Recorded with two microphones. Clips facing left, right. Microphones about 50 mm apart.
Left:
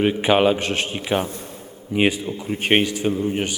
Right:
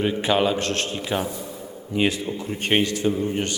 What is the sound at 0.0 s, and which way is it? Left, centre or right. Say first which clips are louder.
Speech: left 4 dB; left.